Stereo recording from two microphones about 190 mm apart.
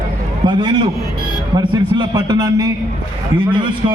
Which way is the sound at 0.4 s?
25° right (ahead or behind).